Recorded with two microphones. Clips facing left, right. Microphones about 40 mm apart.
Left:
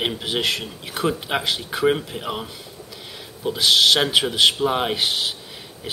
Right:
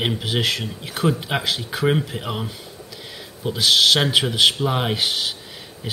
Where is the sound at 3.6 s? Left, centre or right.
Centre.